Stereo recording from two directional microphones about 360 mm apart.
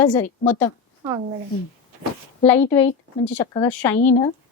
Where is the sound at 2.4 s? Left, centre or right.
Centre.